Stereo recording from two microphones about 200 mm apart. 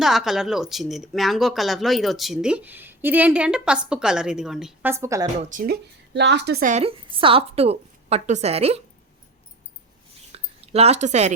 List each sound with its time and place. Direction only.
0.0 s speech: centre (ahead or behind)
5.2 s a woman's voice: 40° right (ahead or behind)
6.1 s a woman's voice: 60° right (ahead or behind); by 8.8 s 30° right (ahead or behind)
10.3 s a sound: 30° right (ahead or behind)